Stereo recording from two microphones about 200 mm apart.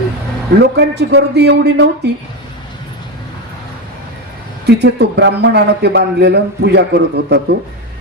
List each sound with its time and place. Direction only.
0.6 s a man's voice: 60° right (ahead or behind)
4.6 s a man's voice: 55° right (ahead or behind)